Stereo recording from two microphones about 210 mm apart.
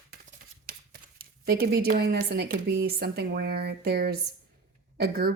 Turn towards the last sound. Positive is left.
turn(degrees=-45)  # may be behind; listen again after turning